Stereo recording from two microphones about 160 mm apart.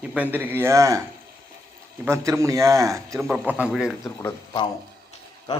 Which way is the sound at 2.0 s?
20° right (ahead or behind).